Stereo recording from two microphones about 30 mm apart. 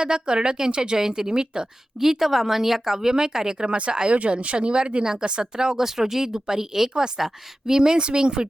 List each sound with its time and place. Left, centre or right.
0.0 s speech: right
0.9 s speech: centre
2.0 s speech: centre
3.7 s speech: right
4.5 s speech: right; by 7.3 s centre
7.7 s speech: right